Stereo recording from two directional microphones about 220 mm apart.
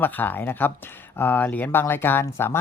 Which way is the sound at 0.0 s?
10° left (ahead or behind).